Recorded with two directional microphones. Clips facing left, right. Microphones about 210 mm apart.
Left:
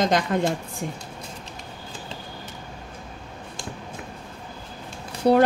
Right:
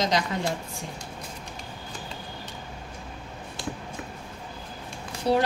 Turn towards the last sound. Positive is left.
turn(degrees=60)  # may be behind; listen again after turning